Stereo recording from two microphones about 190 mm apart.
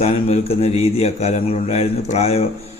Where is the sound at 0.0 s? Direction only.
30° left (ahead or behind).